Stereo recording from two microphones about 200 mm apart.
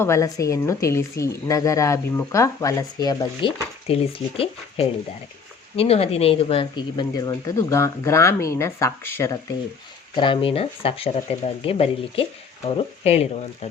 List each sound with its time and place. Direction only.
0.0 s speech: 15° left (ahead or behind)
10.2 s speech: 25° left (ahead or behind)